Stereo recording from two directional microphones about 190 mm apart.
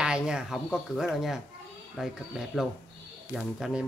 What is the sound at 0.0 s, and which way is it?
Speech, 5° right (ahead or behind).